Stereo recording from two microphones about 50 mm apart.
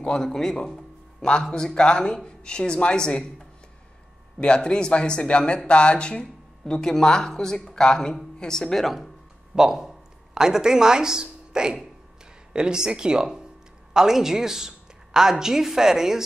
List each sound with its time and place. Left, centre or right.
0.0 s speech: centre
4.4 s speech: centre
6.2 s speech: centre
9.6 s a woman's voice: centre